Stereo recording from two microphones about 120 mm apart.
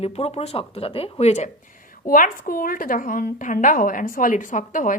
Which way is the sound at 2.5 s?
90° left.